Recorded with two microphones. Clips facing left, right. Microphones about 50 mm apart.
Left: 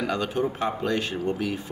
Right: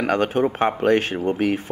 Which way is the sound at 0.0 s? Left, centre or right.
Right.